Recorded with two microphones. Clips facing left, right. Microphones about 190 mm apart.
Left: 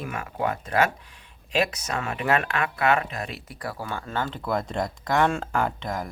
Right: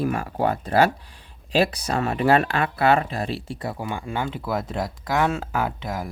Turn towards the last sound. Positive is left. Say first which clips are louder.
# right 1 dB
turn(degrees=-5)  # may be behind; listen again after turning